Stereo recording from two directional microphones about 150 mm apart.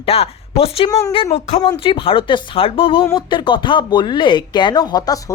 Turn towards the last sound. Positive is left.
turn(degrees=25)  # may be behind; listen again after turning